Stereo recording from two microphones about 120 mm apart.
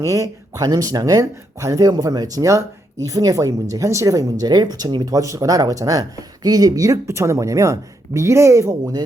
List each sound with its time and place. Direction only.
0.0 s speech: 30° right (ahead or behind)